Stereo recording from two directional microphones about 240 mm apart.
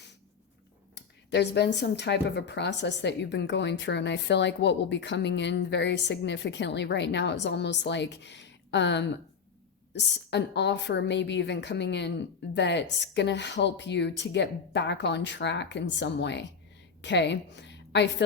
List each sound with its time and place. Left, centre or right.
0.9 s a woman's voice: left